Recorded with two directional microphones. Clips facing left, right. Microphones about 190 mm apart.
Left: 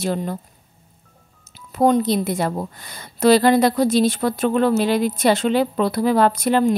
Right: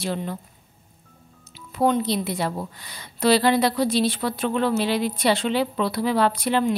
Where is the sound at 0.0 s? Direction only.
45° left (ahead or behind).